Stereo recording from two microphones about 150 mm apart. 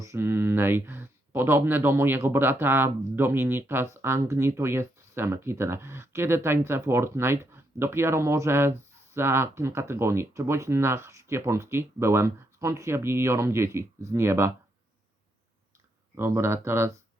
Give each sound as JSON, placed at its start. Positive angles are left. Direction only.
{"t": 0.0, "sound": "speech", "side_deg": -20}
{"t": 16.1, "sound": "speech", "side_deg": -15}